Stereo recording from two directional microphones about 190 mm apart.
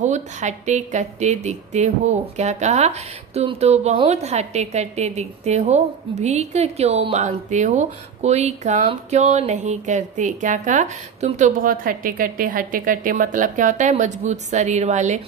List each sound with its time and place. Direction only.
0.0 s speech: 40° right (ahead or behind)